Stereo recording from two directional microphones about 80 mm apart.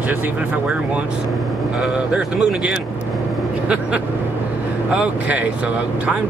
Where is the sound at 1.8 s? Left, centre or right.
Centre.